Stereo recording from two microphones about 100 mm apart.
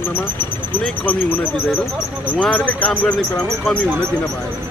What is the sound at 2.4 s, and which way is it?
Speech, 15° left (ahead or behind).